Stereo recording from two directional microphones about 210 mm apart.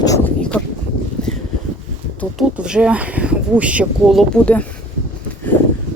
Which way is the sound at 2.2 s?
Centre (ahead or behind).